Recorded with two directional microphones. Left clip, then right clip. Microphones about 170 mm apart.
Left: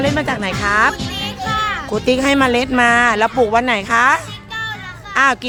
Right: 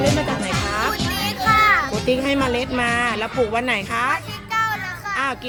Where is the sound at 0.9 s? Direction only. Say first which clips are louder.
Even; centre (ahead or behind).